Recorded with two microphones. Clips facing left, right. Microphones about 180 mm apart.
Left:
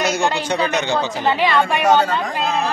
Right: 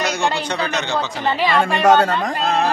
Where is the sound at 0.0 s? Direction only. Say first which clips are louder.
Left 1 dB; 5° left (ahead or behind).